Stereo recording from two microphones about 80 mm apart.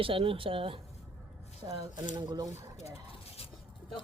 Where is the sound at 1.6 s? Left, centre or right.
Right.